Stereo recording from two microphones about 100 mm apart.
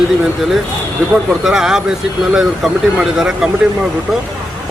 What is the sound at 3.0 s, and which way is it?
Speech, 5° right (ahead or behind).